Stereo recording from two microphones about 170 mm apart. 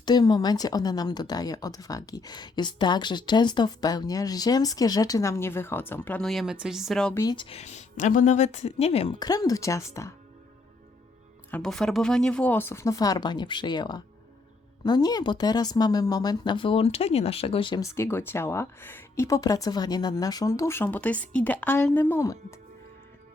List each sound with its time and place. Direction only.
0.0 s speech: 25° left (ahead or behind)
6.2 s speech: centre (ahead or behind)
7.1 s speech: 20° left (ahead or behind)
7.3 s a woman's voice: 35° left (ahead or behind)
9.1 s speech: 20° left (ahead or behind)
11.5 s speech: 5° left (ahead or behind); by 17.8 s 30° left (ahead or behind)
17.8 s speech: 15° left (ahead or behind)